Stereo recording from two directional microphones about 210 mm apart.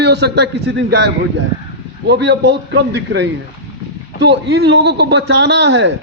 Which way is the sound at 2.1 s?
55° right (ahead or behind).